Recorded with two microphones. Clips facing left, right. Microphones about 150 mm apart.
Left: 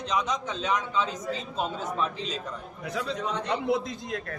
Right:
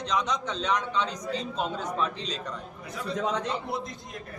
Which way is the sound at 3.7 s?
90° left.